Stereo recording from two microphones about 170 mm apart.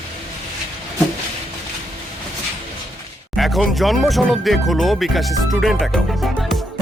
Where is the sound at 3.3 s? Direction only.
Centre (ahead or behind).